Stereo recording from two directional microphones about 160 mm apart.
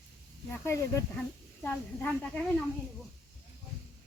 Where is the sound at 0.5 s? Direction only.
15° left (ahead or behind).